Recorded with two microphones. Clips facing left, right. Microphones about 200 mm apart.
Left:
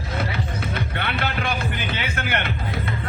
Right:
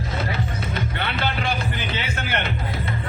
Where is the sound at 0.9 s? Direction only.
55° left (ahead or behind).